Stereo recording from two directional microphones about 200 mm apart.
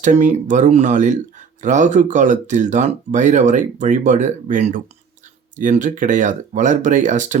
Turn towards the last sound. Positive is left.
turn(degrees=-40)  # may be behind; listen again after turning